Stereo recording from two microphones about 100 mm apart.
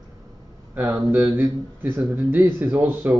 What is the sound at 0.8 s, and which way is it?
Speech, 20° right (ahead or behind).